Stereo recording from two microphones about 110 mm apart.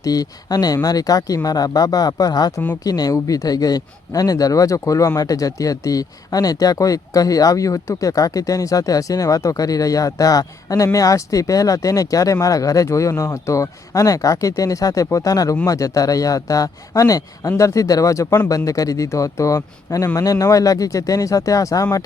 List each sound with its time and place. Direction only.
0.0 s speech: 35° left (ahead or behind)